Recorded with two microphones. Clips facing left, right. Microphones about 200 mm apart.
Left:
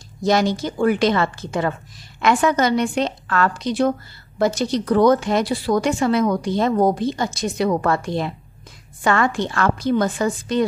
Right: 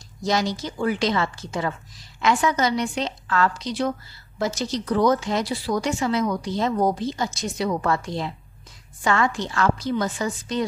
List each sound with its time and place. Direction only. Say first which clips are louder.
0.2 s a woman's voice: left 6 dB; 55° left (ahead or behind)